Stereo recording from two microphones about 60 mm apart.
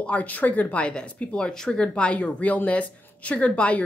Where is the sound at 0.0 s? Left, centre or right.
Left.